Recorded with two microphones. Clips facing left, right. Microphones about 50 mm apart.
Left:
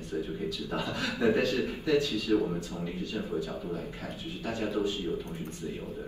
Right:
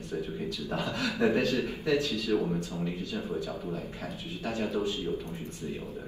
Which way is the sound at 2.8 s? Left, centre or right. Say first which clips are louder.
Right 1 dB; right.